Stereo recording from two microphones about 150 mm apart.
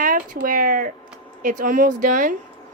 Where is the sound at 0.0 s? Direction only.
65° right (ahead or behind).